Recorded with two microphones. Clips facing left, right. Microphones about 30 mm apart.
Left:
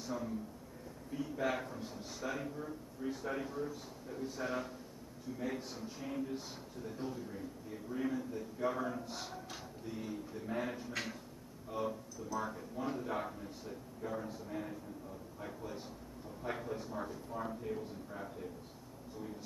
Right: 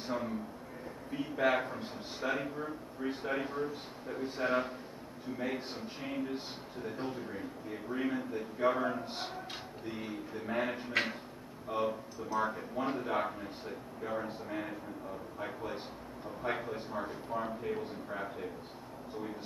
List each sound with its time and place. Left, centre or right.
0.0 s a man's voice: right